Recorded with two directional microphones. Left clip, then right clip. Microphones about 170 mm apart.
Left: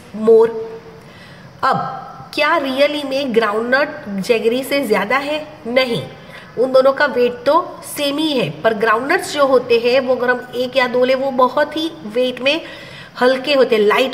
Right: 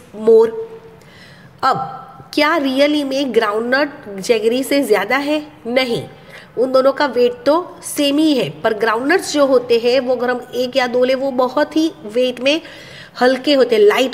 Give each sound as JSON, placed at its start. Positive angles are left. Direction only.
{"t": 0.2, "sound": "a woman's voice", "side_deg": -40}
{"t": 1.6, "sound": "a woman's voice", "side_deg": -40}